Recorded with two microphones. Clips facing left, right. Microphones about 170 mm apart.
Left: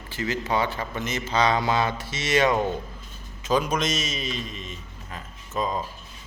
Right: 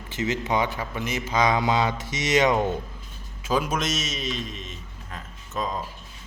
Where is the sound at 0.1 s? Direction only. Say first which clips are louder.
Right 1 dB; 20° right (ahead or behind).